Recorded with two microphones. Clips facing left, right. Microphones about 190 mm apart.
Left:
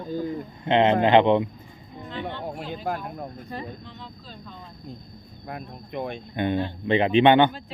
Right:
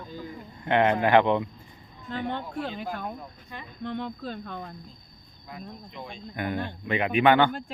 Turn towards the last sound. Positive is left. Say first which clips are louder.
# left 4 dB
turn(degrees=20)  # may be behind; listen again after turning